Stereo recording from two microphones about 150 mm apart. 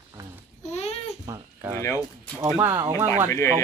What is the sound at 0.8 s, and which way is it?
Babbling, 45° left (ahead or behind).